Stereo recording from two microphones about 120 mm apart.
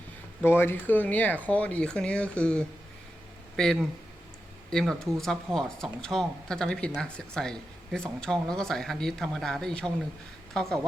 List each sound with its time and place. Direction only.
0.4 s speech: 20° left (ahead or behind); by 10.8 s 5° left (ahead or behind)